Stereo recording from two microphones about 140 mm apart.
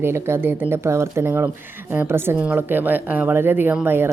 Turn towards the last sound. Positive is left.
turn(degrees=-15)  # may be behind; listen again after turning